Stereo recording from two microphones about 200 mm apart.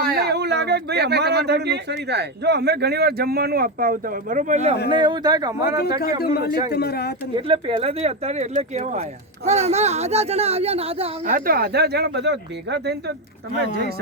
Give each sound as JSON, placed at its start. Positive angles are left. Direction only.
{"t": 0.0, "sound": "speech", "side_deg": -50}
{"t": 4.9, "sound": "speech", "side_deg": -25}
{"t": 6.0, "sound": "speech", "side_deg": 50}
{"t": 7.3, "sound": "speech", "side_deg": -25}
{"t": 11.3, "sound": "speech", "side_deg": -45}